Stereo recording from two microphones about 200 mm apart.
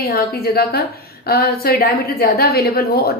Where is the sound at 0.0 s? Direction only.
50° left (ahead or behind).